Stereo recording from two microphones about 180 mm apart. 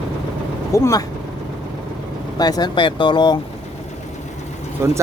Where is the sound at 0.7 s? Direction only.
15° left (ahead or behind).